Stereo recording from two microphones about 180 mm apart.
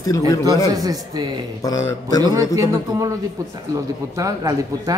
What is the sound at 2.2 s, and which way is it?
Speech, 20° right (ahead or behind).